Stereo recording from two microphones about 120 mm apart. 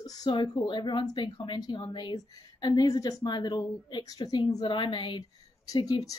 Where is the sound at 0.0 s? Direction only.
30° left (ahead or behind).